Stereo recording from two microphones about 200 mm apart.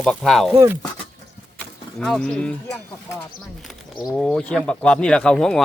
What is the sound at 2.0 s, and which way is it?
Speech, 5° left (ahead or behind).